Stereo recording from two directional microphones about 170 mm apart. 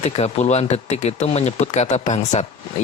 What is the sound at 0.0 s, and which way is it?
Speech, 40° left (ahead or behind).